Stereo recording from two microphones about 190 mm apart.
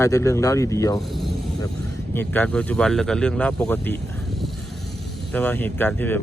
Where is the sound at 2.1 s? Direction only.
10° left (ahead or behind).